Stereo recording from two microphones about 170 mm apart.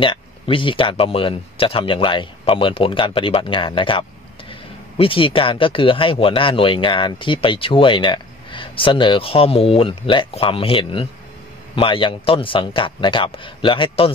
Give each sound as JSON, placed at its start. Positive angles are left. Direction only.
{"t": 0.0, "sound": "speech", "side_deg": 30}